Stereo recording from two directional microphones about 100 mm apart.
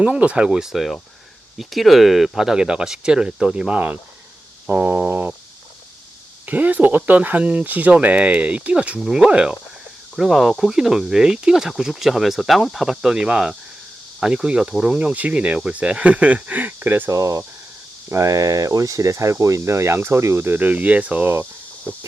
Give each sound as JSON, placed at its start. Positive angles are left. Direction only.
{"t": 0.0, "sound": "speech", "side_deg": -10}
{"t": 6.4, "sound": "speech", "side_deg": -15}